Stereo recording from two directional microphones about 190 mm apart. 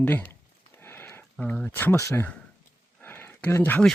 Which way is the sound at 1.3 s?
5° left (ahead or behind).